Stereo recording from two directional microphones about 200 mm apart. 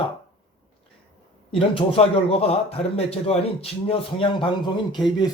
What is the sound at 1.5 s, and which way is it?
A man's voice, 25° left (ahead or behind).